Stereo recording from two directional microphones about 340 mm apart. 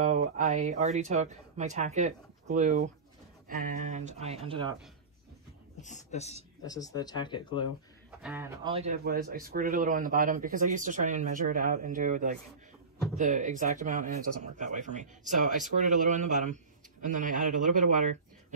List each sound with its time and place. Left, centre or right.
0.0 s speech: right
5.8 s speech: left
8.2 s speech: centre; by 18.0 s right